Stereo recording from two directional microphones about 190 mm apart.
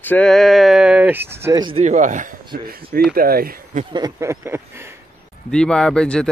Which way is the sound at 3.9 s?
20° right (ahead or behind).